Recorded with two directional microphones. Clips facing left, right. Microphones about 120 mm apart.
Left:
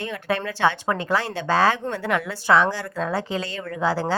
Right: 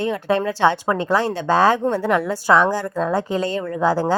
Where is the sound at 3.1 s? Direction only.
45° right (ahead or behind).